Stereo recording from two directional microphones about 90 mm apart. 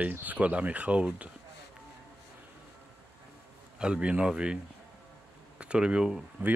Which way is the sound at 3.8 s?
10° right (ahead or behind).